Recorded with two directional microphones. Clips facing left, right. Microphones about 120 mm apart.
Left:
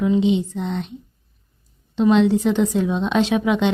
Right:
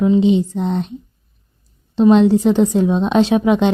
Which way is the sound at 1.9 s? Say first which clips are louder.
Right 5 dB; 40° right (ahead or behind).